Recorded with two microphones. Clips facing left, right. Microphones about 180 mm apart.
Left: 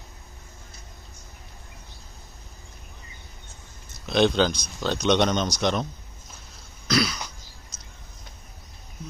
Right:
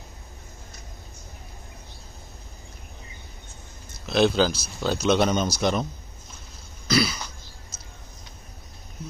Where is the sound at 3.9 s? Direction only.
Centre (ahead or behind).